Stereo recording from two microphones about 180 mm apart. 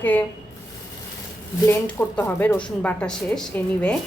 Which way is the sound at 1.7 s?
10° left (ahead or behind).